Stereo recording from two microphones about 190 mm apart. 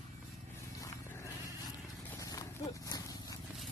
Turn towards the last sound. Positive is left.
turn(degrees=20)  # may be behind; listen again after turning